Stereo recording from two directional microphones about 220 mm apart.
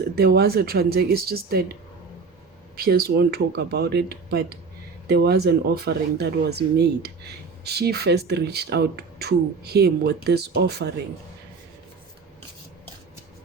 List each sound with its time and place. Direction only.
0.2 s speech: 45° right (ahead or behind)
2.7 s speech: 45° right (ahead or behind)